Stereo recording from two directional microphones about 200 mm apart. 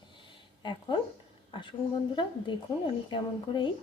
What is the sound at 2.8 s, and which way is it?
Speech, 25° left (ahead or behind).